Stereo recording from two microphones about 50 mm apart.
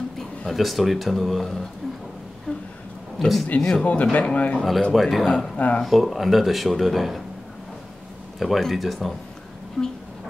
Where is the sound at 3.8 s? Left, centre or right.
Left.